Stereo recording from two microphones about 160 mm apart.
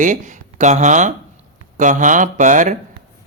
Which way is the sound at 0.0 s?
50° right (ahead or behind).